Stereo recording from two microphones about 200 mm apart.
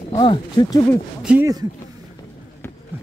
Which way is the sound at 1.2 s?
5° right (ahead or behind).